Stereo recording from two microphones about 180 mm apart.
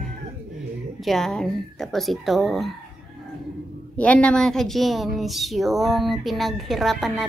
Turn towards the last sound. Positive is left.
turn(degrees=0)  # may be behind; listen again after turning